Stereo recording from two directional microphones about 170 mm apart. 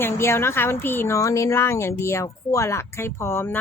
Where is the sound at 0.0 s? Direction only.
15° left (ahead or behind).